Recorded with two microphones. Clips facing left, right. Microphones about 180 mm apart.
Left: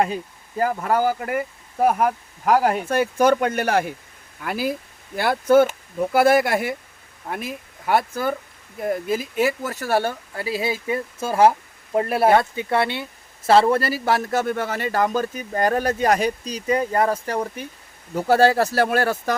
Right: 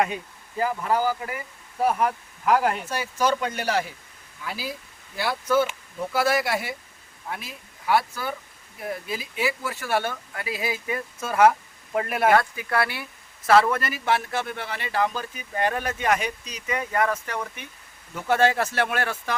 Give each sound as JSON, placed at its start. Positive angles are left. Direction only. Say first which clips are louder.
{"t": 0.6, "sound": "speech", "louder": "left 3 dB", "side_deg": 50}